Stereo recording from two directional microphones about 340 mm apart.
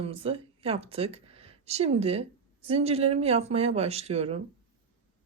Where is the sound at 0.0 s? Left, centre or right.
Centre.